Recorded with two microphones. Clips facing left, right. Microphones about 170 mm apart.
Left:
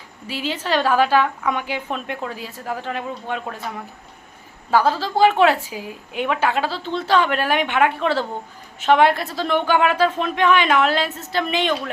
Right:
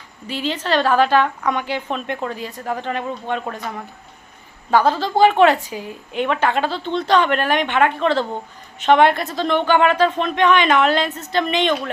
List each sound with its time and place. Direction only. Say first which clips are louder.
0.3 s a woman's voice: right 2 dB; 10° left (ahead or behind)
4.7 s a woman's voice: right 2 dB; 5° left (ahead or behind)